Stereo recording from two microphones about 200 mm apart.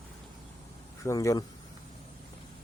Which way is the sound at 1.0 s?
15° left (ahead or behind).